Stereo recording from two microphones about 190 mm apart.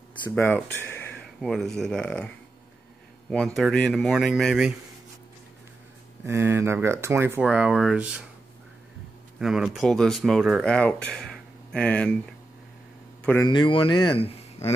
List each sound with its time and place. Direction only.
0.4 s speech: 10° left (ahead or behind)
6.2 s speech: 15° right (ahead or behind)
9.4 s speech: centre (ahead or behind)
13.4 s speech: 25° left (ahead or behind)